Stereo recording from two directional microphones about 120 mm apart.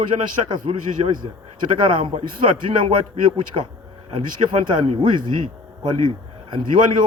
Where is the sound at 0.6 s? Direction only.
55° right (ahead or behind).